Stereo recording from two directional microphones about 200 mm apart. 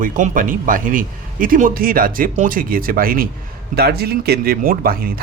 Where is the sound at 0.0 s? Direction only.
40° right (ahead or behind).